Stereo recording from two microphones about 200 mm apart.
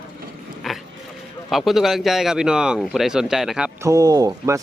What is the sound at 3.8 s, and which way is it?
Speech, 15° right (ahead or behind).